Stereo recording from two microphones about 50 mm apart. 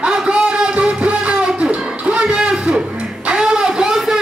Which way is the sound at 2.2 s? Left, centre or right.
Centre.